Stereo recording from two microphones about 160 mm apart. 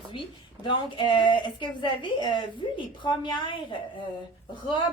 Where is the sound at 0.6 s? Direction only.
30° left (ahead or behind).